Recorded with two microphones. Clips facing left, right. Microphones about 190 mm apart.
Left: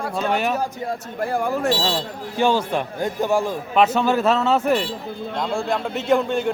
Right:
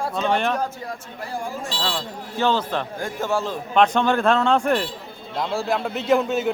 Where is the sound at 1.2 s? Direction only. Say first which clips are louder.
Left 9 dB; 60° left (ahead or behind).